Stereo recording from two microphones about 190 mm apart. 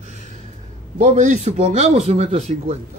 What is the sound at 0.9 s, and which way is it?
Speech, 35° right (ahead or behind).